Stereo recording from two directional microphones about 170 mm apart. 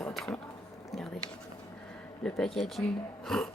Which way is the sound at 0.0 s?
5° left (ahead or behind).